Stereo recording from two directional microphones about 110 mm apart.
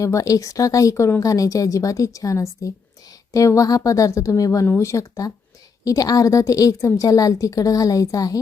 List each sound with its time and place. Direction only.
0.0 s a woman's voice: 30° left (ahead or behind)